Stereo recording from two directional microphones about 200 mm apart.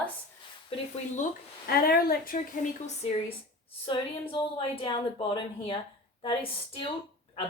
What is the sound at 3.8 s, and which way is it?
A woman's voice, 25° left (ahead or behind).